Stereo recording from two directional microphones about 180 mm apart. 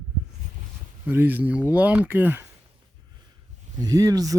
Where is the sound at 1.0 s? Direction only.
10° right (ahead or behind).